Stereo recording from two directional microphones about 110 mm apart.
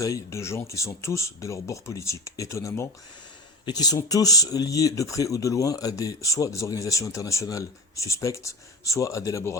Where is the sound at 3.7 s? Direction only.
35° left (ahead or behind).